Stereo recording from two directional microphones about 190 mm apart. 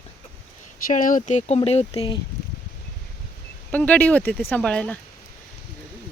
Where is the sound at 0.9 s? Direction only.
45° left (ahead or behind); by 2.2 s 25° left (ahead or behind).